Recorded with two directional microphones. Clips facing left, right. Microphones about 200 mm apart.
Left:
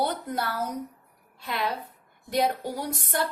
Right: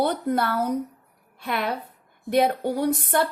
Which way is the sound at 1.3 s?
55° right (ahead or behind).